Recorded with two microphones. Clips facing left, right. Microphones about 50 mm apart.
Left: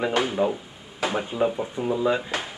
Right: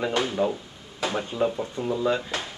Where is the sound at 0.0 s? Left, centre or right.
Centre.